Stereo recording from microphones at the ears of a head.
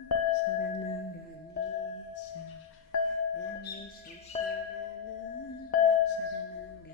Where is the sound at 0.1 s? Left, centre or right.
Left.